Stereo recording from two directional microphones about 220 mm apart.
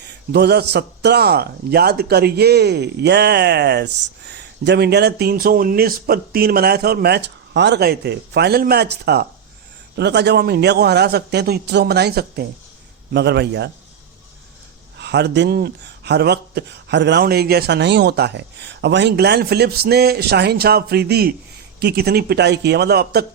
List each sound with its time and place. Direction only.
0.0 s speech: 50° right (ahead or behind)
14.9 s speech: 50° right (ahead or behind)